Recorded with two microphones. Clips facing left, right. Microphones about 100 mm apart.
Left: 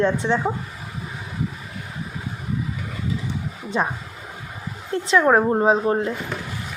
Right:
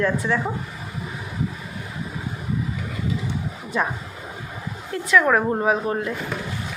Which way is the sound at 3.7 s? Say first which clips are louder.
Left 1 dB; 25° left (ahead or behind).